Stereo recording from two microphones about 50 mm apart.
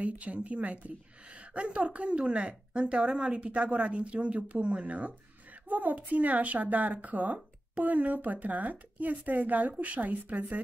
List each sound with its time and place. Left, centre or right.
0.0 s a woman's voice: right